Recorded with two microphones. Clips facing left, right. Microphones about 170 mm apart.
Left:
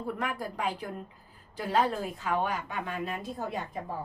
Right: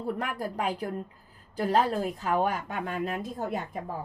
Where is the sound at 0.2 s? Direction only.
40° right (ahead or behind).